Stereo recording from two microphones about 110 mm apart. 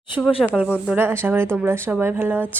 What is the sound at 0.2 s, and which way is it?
Speech, 10° right (ahead or behind).